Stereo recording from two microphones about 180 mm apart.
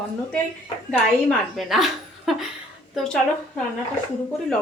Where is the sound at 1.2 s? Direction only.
Centre (ahead or behind).